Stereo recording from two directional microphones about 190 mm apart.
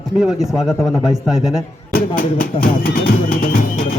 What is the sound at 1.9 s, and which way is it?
Music, 50° left (ahead or behind).